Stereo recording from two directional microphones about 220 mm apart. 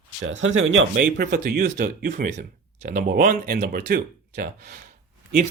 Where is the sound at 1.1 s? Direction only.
40° right (ahead or behind).